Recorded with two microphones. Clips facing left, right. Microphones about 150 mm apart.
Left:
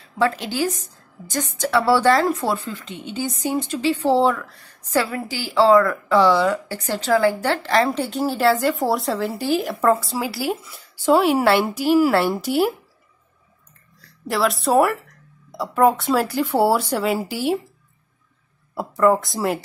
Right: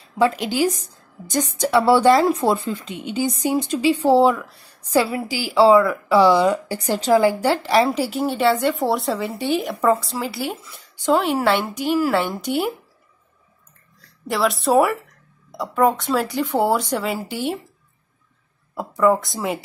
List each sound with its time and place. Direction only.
0.2 s a woman's voice: 15° right (ahead or behind); by 12.7 s centre (ahead or behind)
14.2 s speech: centre (ahead or behind)
18.8 s speech: centre (ahead or behind)